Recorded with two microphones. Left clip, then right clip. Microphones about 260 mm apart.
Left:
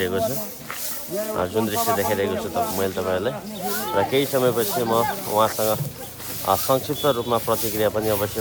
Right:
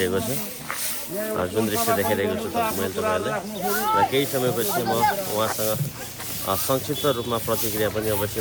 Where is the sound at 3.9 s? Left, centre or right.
Left.